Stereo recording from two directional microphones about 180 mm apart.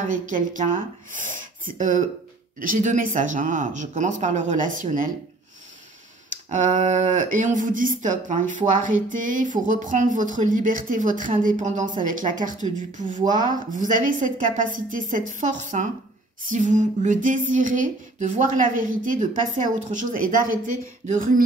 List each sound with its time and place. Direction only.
0.1 s speech: 45° right (ahead or behind)
6.5 s speech: 45° right (ahead or behind)